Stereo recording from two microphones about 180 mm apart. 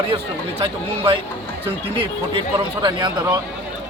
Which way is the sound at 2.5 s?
25° right (ahead or behind).